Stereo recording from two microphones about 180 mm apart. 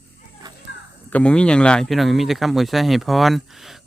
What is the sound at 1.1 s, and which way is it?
Speech, 5° left (ahead or behind).